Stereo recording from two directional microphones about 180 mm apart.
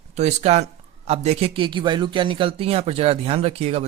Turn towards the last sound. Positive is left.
turn(degrees=-35)  # may be behind; listen again after turning